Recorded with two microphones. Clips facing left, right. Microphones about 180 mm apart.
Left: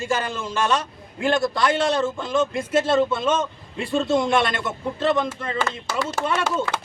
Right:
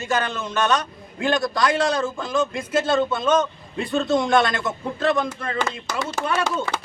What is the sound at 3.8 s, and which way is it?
Speech, 25° left (ahead or behind).